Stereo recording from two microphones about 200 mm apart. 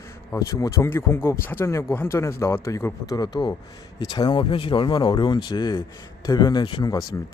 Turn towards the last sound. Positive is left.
turn(degrees=20)  # may be behind; listen again after turning